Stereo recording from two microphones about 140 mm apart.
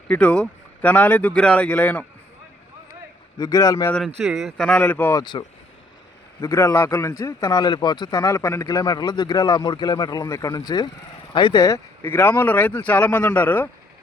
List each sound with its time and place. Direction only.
0.1 s speech: 10° left (ahead or behind)
3.3 s speech: 30° left (ahead or behind)
4.2 s speech: centre (ahead or behind)
4.8 s speech: 15° left (ahead or behind)
5.2 s speech: 30° left (ahead or behind)
6.4 s speech: 20° left (ahead or behind)
7.6 s speech: 35° left (ahead or behind); by 13.7 s 15° left (ahead or behind)